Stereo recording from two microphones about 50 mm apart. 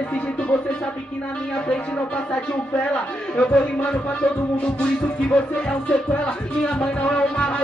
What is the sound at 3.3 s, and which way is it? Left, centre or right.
Speech, left.